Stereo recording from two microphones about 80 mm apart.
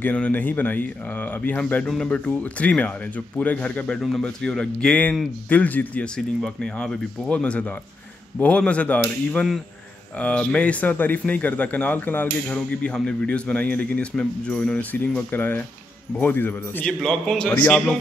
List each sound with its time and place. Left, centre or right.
0.0 s a man's voice: centre
6.1 s a man's voice: centre; by 12.5 s left
12.5 s a man's voice: centre
16.8 s a man's voice: centre